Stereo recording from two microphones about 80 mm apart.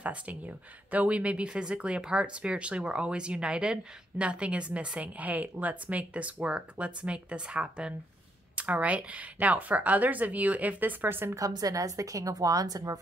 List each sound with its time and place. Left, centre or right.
0.0 s speech: centre
11.3 s speech: right